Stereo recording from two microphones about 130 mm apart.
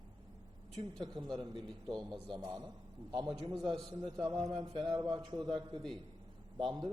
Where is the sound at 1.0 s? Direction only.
40° right (ahead or behind).